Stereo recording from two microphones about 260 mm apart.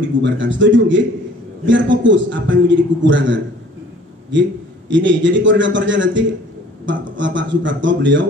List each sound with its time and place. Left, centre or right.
0.2 s a man's voice: right